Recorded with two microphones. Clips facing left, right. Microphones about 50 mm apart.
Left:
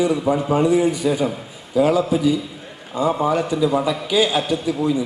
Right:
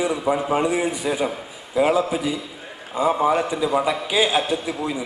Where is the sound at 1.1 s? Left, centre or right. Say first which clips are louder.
Left 3 dB; centre.